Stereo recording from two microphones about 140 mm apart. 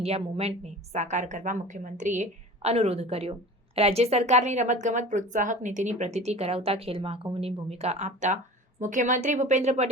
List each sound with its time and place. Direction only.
0.0 s a woman's voice: 45° right (ahead or behind)